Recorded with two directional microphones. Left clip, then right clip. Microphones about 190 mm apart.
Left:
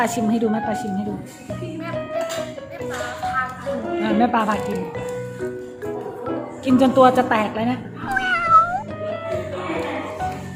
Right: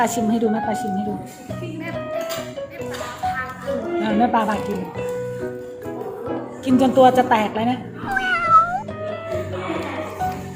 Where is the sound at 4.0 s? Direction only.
Centre (ahead or behind).